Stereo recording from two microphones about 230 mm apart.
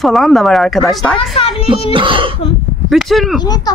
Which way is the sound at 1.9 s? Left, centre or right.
Right.